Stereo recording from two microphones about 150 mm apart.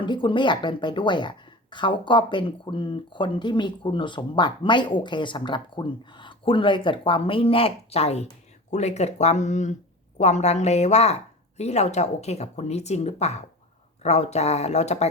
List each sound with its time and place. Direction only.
0.0 s a woman's voice: 30° left (ahead or behind)